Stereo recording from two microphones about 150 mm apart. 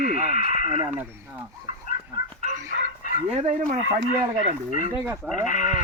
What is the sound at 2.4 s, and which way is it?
Dog, 60° left (ahead or behind).